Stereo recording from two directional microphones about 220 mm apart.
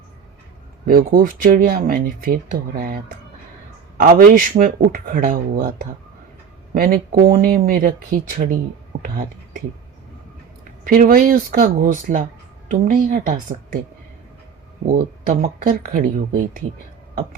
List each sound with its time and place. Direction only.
0.9 s speech: 40° right (ahead or behind)
10.8 s speech: 40° right (ahead or behind)
14.8 s speech: 40° right (ahead or behind)